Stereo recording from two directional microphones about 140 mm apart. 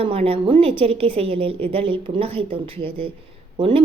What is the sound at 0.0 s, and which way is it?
A woman's voice, 45° right (ahead or behind).